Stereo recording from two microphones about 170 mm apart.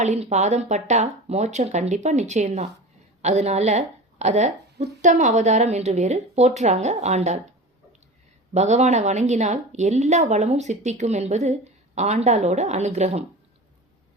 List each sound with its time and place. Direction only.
0.0 s a woman's voice: 40° right (ahead or behind)
8.5 s speech: 40° right (ahead or behind)